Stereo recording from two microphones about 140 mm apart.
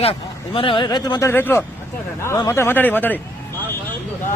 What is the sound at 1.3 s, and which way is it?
Speech, 15° left (ahead or behind).